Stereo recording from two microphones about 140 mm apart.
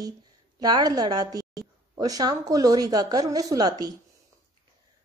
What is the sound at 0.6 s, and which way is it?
A woman's voice, 30° right (ahead or behind).